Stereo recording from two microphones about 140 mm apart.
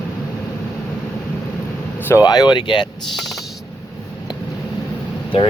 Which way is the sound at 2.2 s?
30° left (ahead or behind).